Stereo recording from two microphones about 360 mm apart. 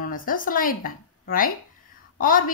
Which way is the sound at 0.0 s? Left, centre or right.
Left.